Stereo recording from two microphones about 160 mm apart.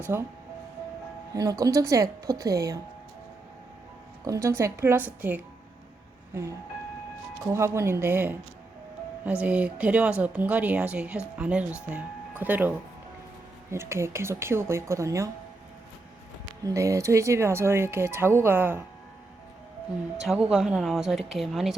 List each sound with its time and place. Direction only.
0.0 s speech: 15° right (ahead or behind)
1.3 s speech: 25° right (ahead or behind)
4.3 s speech: 20° right (ahead or behind)
7.4 s speech: 20° right (ahead or behind)
16.6 s speech: 20° right (ahead or behind)
20.2 s a woman's voice: 5° right (ahead or behind)